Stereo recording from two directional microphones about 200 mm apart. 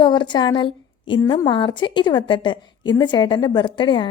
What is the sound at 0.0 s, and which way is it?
A woman's voice, 25° left (ahead or behind).